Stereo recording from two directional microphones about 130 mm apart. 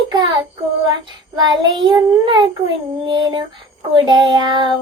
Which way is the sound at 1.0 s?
35° right (ahead or behind).